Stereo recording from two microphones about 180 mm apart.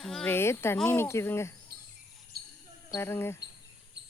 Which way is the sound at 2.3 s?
60° right (ahead or behind).